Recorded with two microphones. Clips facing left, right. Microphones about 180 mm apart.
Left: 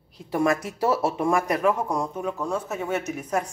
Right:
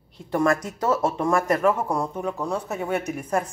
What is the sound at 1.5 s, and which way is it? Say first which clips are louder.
Speech: right 2 dB; centre (ahead or behind).